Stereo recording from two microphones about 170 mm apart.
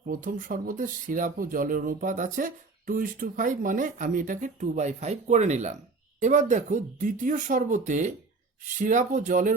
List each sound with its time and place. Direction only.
0.0 s speech: 55° right (ahead or behind)